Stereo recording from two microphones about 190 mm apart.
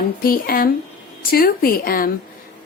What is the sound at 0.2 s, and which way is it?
Speech, 50° left (ahead or behind).